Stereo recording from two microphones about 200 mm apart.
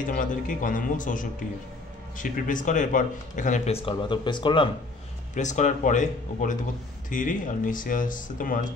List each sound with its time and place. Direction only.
0.0 s speech: 40° left (ahead or behind); by 4.6 s 25° left (ahead or behind)
5.3 s speech: 35° left (ahead or behind)